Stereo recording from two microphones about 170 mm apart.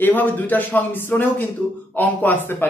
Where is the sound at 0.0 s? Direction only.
10° left (ahead or behind).